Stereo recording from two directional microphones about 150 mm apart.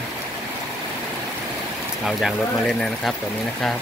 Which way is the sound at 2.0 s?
Centre (ahead or behind).